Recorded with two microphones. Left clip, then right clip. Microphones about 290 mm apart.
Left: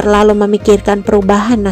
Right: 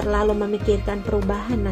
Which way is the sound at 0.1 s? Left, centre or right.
Left.